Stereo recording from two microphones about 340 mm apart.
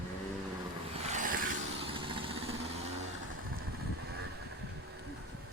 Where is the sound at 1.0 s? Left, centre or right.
Right.